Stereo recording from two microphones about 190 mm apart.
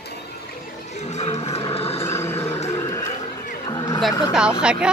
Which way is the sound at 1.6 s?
30° left (ahead or behind).